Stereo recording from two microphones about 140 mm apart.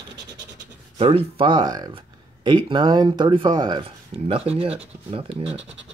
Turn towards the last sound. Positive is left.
turn(degrees=-45)  # may be behind; listen again after turning